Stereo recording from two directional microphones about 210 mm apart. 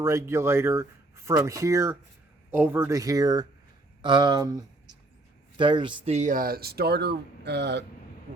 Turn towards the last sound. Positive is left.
turn(degrees=-55)  # may be behind; listen again after turning